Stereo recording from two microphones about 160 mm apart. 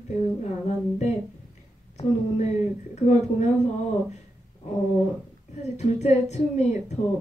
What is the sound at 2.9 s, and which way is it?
Speech, 45° left (ahead or behind).